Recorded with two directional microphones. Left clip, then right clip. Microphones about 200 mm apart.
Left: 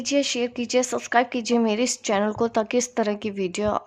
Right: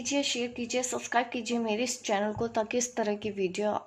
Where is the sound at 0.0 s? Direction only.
45° left (ahead or behind).